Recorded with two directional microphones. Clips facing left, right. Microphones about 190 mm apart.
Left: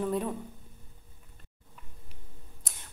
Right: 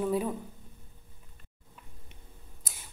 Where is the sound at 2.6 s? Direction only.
5° right (ahead or behind).